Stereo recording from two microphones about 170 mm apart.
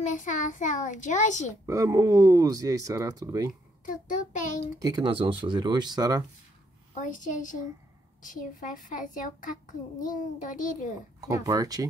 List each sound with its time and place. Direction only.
0.0 s a child's voice: 45° left (ahead or behind)
1.7 s speech: 20° right (ahead or behind)
3.8 s a child's voice: 50° left (ahead or behind)
4.7 s speech: 25° right (ahead or behind)
6.9 s a child's voice: 45° left (ahead or behind)
11.1 s speech: 20° right (ahead or behind)